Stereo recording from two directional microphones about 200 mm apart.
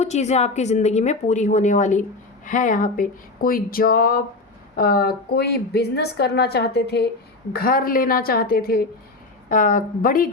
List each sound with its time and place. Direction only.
0.0 s a woman's voice: 35° left (ahead or behind)